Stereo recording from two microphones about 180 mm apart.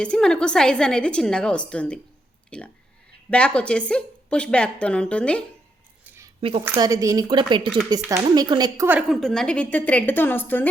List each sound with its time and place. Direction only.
0.0 s speech: 5° left (ahead or behind)
6.1 s a sound: 15° right (ahead or behind)
6.7 s speech: 20° right (ahead or behind)
8.9 s a woman's voice: 5° right (ahead or behind)